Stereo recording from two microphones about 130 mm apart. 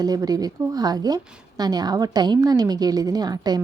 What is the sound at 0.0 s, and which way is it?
A woman's voice, 30° right (ahead or behind).